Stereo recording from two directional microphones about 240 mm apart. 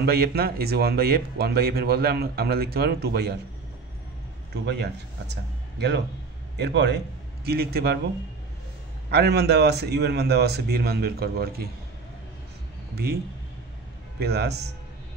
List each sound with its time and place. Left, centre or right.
0.0 s speech: right
5.3 s a man's voice: right
9.1 s a man's voice: right
12.9 s speech: right
14.2 s a man's voice: right